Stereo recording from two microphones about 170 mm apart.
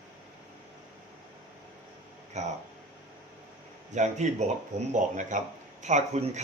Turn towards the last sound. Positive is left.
turn(degrees=-40)  # may be behind; listen again after turning